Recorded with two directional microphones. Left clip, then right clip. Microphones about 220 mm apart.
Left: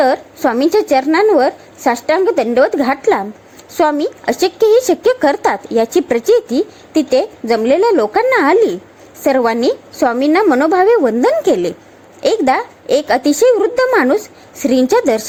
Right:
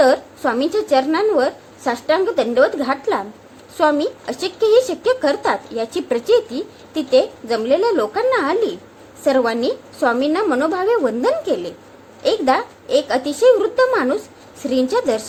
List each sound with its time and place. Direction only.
0.0 s a woman's voice: 30° left (ahead or behind)